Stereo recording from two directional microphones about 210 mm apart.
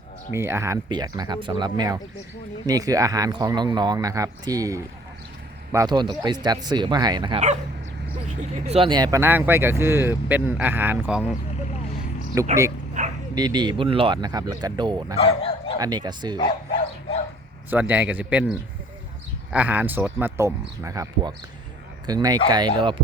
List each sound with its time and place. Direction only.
0.3 s speech: 10° right (ahead or behind)
8.4 s speech: 30° right (ahead or behind); by 11.2 s 10° right (ahead or behind)
12.3 s speech: 15° right (ahead or behind)
13.0 s dog: 35° right (ahead or behind)
13.3 s speech: 20° right (ahead or behind)
15.1 s speech: 25° left (ahead or behind)
15.8 s speech: 20° right (ahead or behind)
17.7 s speech: 5° right (ahead or behind)